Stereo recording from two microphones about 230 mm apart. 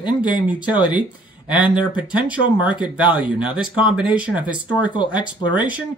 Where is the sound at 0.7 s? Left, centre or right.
Centre.